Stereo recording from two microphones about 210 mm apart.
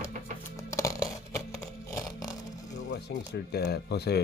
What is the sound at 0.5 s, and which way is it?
Music, 15° left (ahead or behind).